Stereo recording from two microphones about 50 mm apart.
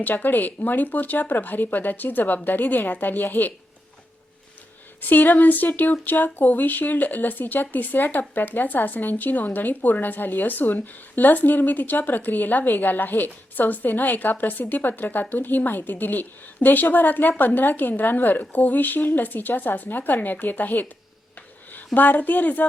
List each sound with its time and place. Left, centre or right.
0.0 s a woman's voice: left
5.0 s a woman's voice: left
21.9 s a woman's voice: left